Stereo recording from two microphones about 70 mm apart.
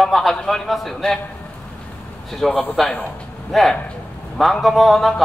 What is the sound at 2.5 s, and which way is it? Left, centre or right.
Speech, left.